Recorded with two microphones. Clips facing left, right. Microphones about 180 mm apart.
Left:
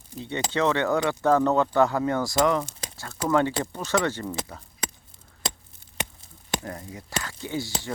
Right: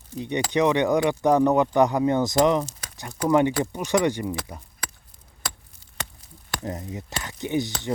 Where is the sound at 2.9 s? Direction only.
15° right (ahead or behind).